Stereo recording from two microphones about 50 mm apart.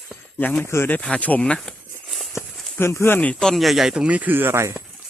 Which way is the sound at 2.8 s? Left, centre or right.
Left.